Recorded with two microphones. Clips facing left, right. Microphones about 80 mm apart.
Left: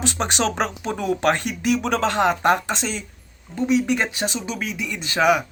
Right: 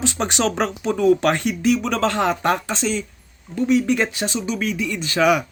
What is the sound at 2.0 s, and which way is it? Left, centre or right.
Speech, left.